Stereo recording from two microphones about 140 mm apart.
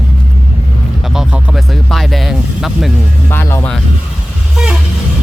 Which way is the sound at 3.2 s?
15° left (ahead or behind).